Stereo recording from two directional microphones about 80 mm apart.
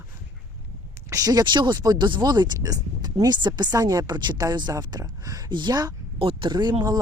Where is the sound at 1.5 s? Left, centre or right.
Right.